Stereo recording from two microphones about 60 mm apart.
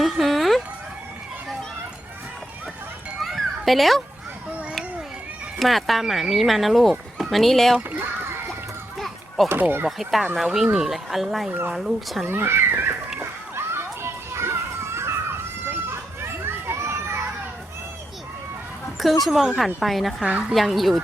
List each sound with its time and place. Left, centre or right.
0.0 s a sound: centre
3.2 s children playing: centre
5.5 s speech: centre
7.8 s a sound: right
9.6 s speech: right
10.0 s speech: centre
12.2 s speech: right
13.1 s children playing: right
15.6 s a sound: right
19.2 s speech: centre